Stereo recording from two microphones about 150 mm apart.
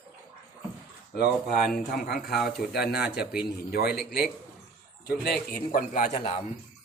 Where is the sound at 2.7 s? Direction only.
90° left; by 6.2 s 60° left (ahead or behind).